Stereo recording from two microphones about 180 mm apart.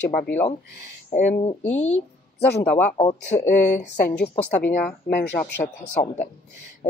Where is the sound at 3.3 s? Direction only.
40° left (ahead or behind).